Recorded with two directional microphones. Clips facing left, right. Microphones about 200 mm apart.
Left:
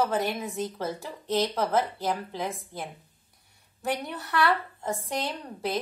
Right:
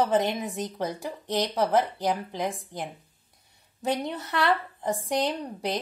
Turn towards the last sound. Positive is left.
turn(degrees=-15)  # may be behind; listen again after turning